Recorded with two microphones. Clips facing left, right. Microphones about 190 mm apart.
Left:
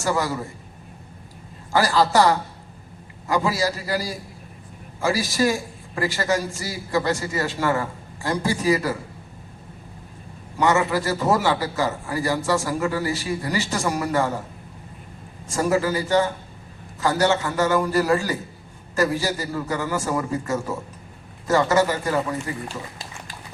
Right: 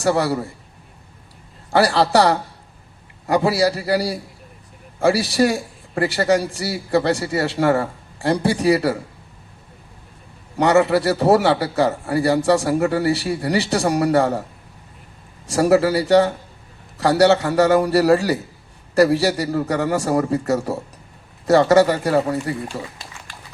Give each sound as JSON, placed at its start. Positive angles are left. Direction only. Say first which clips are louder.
{"t": 0.0, "sound": "a man's voice", "louder": "right 5 dB", "side_deg": -65}
{"t": 1.7, "sound": "a man's voice", "louder": "right 3 dB", "side_deg": -65}
{"t": 3.2, "sound": "a man's voice", "louder": "right 5 dB", "side_deg": -65}
{"t": 10.7, "sound": "a man's voice", "louder": "right 6 dB", "side_deg": -65}
{"t": 15.4, "sound": "a man's voice", "louder": "right 6 dB", "side_deg": -70}